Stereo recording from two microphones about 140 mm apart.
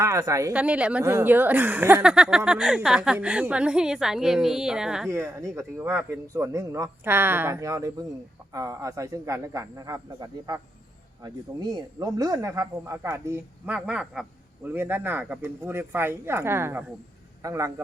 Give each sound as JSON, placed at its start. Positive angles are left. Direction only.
{"t": 0.0, "sound": "speech", "side_deg": -20}
{"t": 0.5, "sound": "a woman's voice", "side_deg": -10}
{"t": 5.0, "sound": "speech", "side_deg": -20}
{"t": 13.7, "sound": "a woman's voice", "side_deg": -5}